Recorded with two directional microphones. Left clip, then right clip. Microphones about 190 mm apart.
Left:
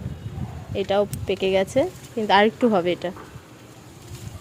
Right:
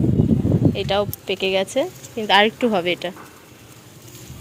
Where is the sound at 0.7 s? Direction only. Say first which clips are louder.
Right 1 dB; 15° left (ahead or behind).